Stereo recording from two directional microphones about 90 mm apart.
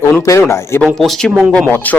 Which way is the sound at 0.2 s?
35° left (ahead or behind).